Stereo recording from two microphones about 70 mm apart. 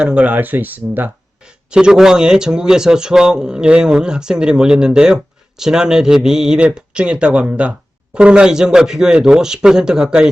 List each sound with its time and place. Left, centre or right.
0.0 s speech: centre
1.5 s speech: centre